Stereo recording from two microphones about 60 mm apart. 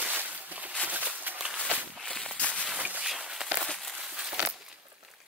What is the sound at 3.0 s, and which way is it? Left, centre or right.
Walk, centre.